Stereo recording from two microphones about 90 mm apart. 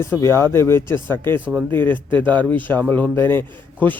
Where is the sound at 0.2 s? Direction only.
30° left (ahead or behind).